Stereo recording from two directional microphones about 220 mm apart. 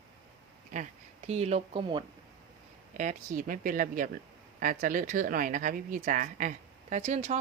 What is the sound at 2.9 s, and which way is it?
A woman's voice, 35° right (ahead or behind).